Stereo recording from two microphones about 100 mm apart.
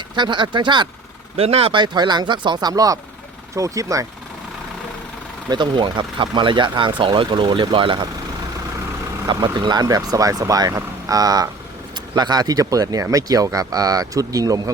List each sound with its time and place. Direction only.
0.2 s speech: 50° right (ahead or behind)
1.4 s speech: 85° right
1.7 s speech: 50° right (ahead or behind)
5.5 s speech: 50° right (ahead or behind)
9.2 s speech: 50° right (ahead or behind)